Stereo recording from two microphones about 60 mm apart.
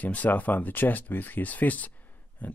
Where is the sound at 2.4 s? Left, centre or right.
Left.